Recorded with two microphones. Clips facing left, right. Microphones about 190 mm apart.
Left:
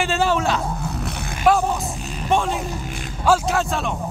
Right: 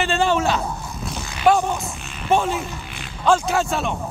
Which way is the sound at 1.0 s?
60° left (ahead or behind).